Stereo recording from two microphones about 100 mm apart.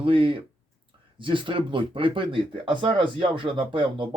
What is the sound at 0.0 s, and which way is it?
Speech, 60° right (ahead or behind).